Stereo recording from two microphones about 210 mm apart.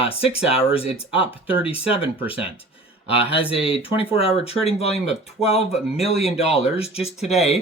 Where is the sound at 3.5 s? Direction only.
25° left (ahead or behind).